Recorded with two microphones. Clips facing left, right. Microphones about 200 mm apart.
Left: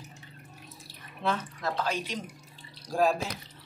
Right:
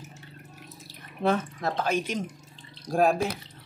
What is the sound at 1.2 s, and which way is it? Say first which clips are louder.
Speech: right 5 dB; 50° right (ahead or behind).